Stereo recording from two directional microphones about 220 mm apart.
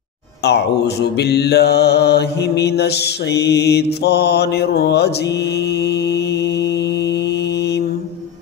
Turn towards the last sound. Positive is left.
turn(degrees=50)  # may be behind; listen again after turning